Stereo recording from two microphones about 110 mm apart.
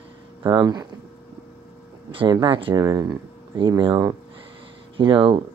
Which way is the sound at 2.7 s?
30° right (ahead or behind).